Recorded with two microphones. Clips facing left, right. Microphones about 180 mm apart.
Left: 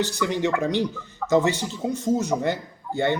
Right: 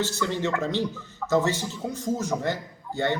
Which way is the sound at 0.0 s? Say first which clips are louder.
Left 3 dB; 15° left (ahead or behind).